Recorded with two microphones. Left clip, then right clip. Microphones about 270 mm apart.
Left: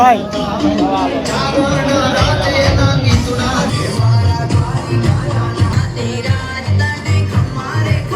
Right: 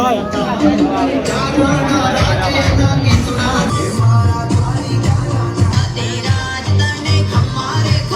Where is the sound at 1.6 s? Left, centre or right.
Centre.